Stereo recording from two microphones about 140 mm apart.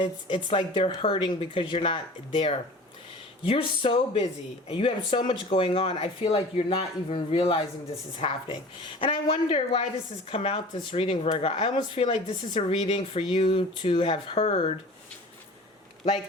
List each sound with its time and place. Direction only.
0.0 s speech: 40° left (ahead or behind)
14.5 s speech: 35° left (ahead or behind)